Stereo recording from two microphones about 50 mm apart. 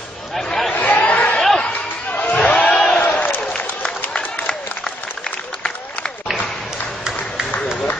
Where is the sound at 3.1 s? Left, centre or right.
Left.